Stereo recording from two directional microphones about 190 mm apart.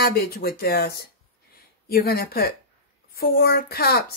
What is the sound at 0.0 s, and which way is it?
Speech, 55° left (ahead or behind).